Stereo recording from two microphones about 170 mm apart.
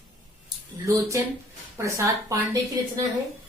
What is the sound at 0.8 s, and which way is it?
A woman's voice, 20° right (ahead or behind).